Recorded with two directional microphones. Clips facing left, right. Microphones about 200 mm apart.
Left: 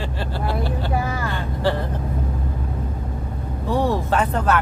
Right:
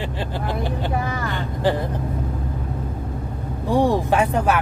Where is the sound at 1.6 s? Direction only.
15° right (ahead or behind).